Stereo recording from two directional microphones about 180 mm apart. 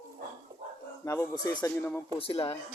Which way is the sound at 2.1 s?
30° left (ahead or behind).